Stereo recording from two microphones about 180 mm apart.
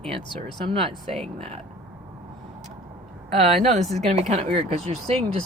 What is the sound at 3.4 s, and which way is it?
Speech, 35° right (ahead or behind).